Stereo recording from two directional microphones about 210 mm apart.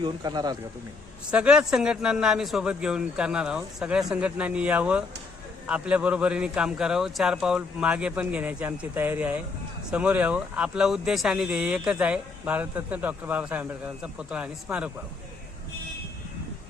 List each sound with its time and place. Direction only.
0.0 s speech: 20° right (ahead or behind)
1.3 s speech: 5° right (ahead or behind)